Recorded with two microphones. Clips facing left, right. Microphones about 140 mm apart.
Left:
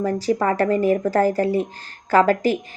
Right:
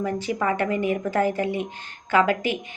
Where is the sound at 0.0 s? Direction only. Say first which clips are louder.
Left 5 dB; 35° left (ahead or behind).